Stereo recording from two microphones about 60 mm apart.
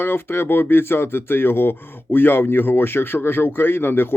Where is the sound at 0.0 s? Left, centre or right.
Left.